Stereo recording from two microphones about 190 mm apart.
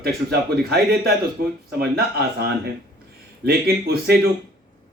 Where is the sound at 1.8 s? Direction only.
55° right (ahead or behind).